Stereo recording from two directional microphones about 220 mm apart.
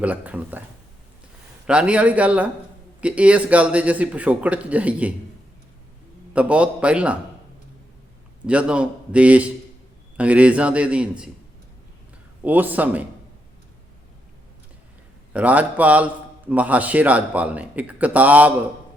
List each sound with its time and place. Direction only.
0.0 s speech: 5° right (ahead or behind)
1.6 s speech: 5° right (ahead or behind)
6.3 s speech: 5° right (ahead or behind)
8.4 s speech: 5° right (ahead or behind)
12.5 s speech: 5° right (ahead or behind)
15.3 s speech: 5° right (ahead or behind)